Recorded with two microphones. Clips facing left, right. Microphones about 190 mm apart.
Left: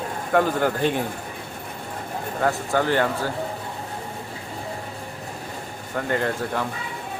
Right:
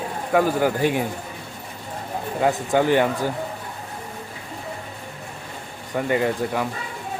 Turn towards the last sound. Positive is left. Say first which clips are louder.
# right 3 dB
turn(degrees=-10)  # may be behind; listen again after turning